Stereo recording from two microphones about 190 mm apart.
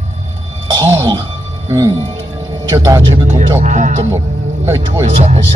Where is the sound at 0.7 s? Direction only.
20° right (ahead or behind).